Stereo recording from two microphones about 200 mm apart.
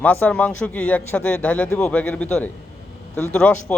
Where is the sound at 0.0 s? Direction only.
10° left (ahead or behind).